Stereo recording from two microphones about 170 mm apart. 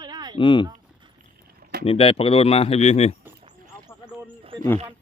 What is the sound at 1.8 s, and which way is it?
Speech, 35° left (ahead or behind).